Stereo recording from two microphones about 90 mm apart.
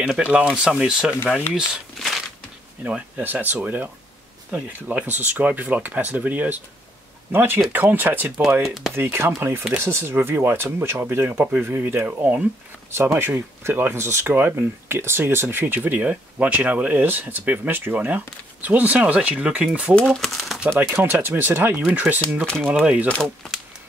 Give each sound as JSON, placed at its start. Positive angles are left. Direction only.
{"t": 0.0, "sound": "speech", "side_deg": -15}
{"t": 2.8, "sound": "speech", "side_deg": -20}
{"t": 8.6, "sound": "speech", "side_deg": 0}
{"t": 8.9, "sound": "speech", "side_deg": -25}
{"t": 20.1, "sound": "speech", "side_deg": 0}
{"t": 21.0, "sound": "speech", "side_deg": -25}